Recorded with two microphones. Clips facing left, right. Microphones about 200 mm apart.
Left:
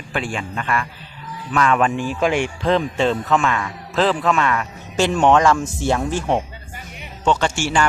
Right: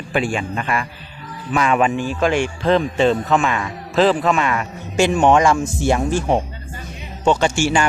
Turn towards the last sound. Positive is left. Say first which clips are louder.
# right 3 dB
turn(degrees=-15)  # may be behind; listen again after turning